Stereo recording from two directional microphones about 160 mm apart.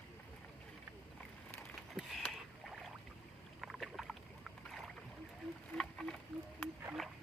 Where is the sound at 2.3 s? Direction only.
Centre (ahead or behind).